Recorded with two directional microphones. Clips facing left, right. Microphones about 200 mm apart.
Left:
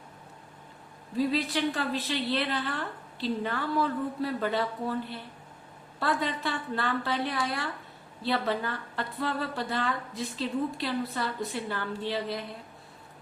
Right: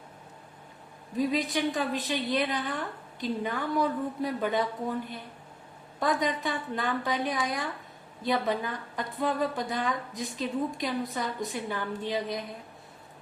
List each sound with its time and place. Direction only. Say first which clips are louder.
1.1 s a woman's voice: even; 15° right (ahead or behind)